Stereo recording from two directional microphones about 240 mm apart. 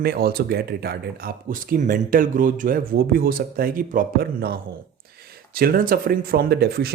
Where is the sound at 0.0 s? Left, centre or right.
Right.